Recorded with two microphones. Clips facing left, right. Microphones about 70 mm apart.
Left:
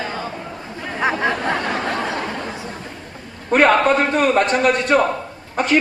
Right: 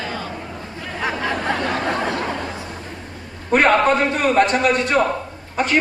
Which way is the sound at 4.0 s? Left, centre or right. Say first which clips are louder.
Even; left.